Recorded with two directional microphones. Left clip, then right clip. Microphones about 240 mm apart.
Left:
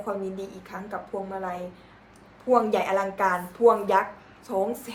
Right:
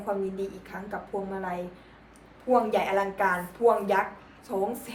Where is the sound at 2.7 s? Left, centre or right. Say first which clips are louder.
Left 1 dB; centre.